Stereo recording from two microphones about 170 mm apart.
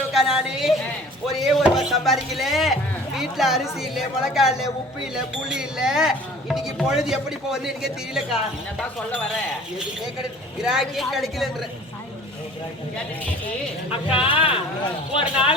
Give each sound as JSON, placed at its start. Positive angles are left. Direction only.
{"t": 0.1, "sound": "speech", "side_deg": -5}
{"t": 10.6, "sound": "speech", "side_deg": 0}
{"t": 13.9, "sound": "speech", "side_deg": 30}